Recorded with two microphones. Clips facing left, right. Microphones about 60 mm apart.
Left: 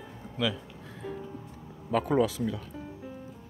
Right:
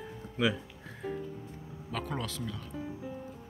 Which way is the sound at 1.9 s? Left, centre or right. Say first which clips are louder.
Left 11 dB; centre.